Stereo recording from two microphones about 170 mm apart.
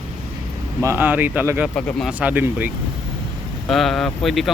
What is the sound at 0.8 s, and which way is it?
Speech, 10° right (ahead or behind).